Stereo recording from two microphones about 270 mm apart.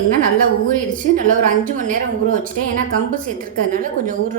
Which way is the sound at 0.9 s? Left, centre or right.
Right.